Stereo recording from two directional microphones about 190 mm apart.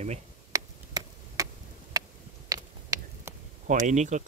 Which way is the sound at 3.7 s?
40° right (ahead or behind).